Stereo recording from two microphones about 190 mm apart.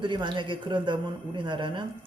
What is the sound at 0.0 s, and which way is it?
Speech, 25° right (ahead or behind).